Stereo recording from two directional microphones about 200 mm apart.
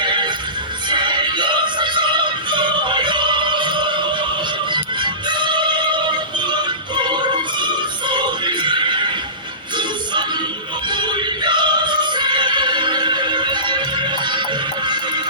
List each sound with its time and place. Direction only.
0.0 s neigh: 25° right (ahead or behind)
0.9 s music: 25° right (ahead or behind)
10.8 s music: 25° right (ahead or behind)